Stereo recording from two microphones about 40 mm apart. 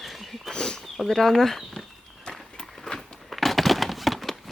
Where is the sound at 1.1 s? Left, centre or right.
Centre.